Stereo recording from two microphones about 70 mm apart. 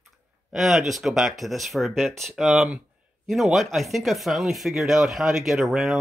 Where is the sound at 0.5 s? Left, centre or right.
Centre.